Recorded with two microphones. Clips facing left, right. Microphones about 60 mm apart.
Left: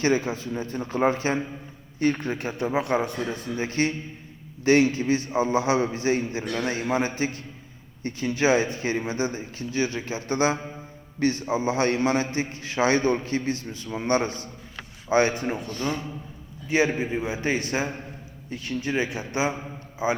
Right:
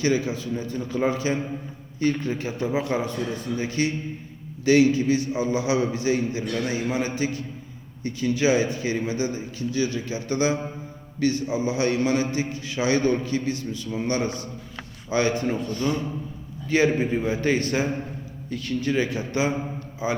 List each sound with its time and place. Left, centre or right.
0.0 s a man's voice: left